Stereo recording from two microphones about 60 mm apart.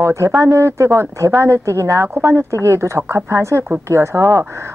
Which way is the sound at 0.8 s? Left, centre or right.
Right.